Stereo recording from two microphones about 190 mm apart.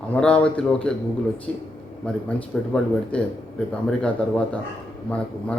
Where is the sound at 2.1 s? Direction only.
5° left (ahead or behind).